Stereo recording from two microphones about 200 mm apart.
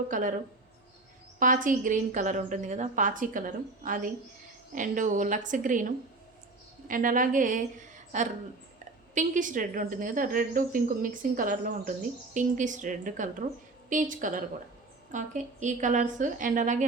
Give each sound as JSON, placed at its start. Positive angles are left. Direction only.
{"t": 0.1, "sound": "speech", "side_deg": -40}
{"t": 1.4, "sound": "a woman's voice", "side_deg": -40}